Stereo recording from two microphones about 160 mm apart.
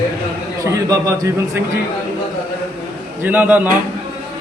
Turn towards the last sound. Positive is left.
turn(degrees=-10)  # may be behind; listen again after turning